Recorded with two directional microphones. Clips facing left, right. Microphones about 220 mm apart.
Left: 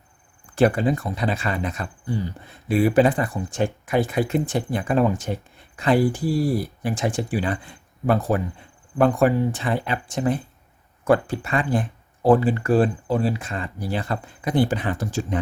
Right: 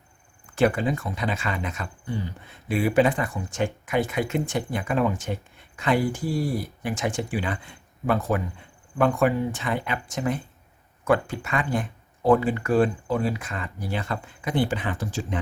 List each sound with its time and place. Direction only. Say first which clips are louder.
0.5 s speech: left 3 dB; 35° left (ahead or behind)